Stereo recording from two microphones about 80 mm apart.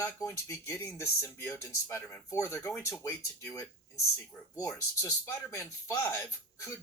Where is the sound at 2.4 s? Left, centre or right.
Left.